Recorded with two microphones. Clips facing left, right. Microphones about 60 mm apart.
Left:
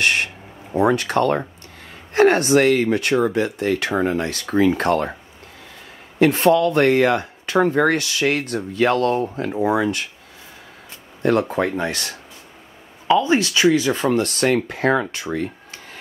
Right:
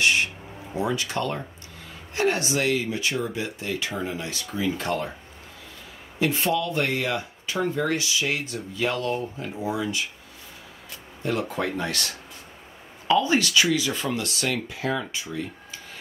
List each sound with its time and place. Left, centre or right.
0.0 s speech: left
6.1 s speech: left
11.4 s speech: left
13.2 s speech: left
14.2 s speech: left